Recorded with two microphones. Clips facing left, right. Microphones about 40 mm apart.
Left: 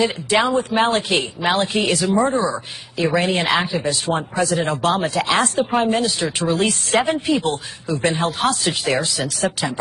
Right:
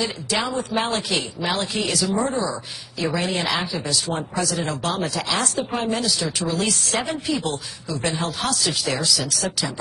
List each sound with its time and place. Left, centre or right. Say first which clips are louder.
0.0 s a woman's voice: left 7 dB; left